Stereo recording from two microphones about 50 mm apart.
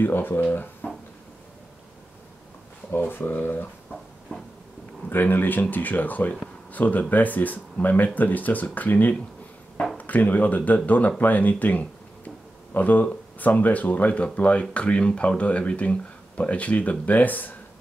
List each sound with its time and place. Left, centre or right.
0.0 s speech: left
2.9 s speech: left
5.1 s speech: left